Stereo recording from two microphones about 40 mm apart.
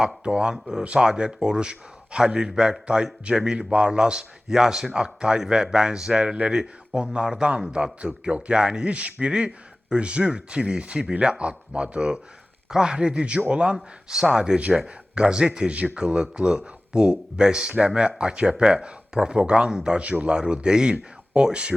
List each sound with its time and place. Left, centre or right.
0.3 s a man's voice: right
20.0 s a man's voice: right